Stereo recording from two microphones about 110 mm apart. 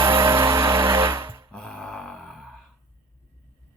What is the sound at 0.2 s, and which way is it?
Music, 20° right (ahead or behind).